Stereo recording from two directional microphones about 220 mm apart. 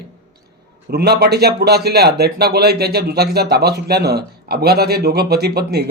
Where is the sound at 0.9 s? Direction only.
45° right (ahead or behind).